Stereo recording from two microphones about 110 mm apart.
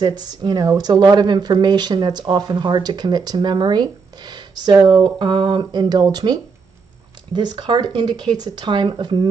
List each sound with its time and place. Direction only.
0.0 s speech: 40° right (ahead or behind)